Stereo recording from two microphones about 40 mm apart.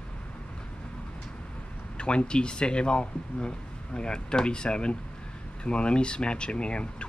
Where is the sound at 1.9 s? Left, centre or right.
Left.